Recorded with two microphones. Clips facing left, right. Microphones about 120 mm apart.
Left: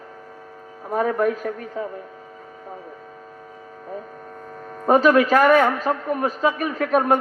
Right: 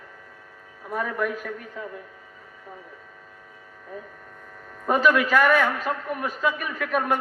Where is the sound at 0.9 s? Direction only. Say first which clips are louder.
Left 7 dB; 40° left (ahead or behind).